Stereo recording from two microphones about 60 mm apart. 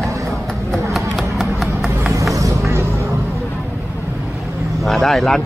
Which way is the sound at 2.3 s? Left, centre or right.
Right.